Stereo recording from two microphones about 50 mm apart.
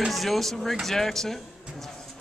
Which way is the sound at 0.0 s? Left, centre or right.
Centre.